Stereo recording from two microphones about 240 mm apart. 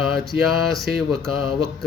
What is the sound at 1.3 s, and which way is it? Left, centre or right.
Speech, left.